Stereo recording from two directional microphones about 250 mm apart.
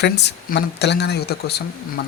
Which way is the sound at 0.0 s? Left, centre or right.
Left.